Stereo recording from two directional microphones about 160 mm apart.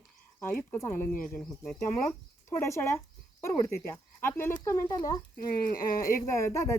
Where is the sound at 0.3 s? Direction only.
15° left (ahead or behind).